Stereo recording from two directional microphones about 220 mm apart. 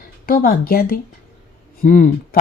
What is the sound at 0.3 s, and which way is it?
Speech, 40° left (ahead or behind).